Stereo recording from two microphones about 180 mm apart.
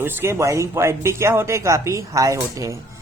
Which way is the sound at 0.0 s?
15° right (ahead or behind).